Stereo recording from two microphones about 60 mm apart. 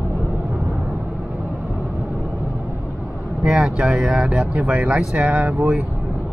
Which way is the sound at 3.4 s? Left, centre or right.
Centre.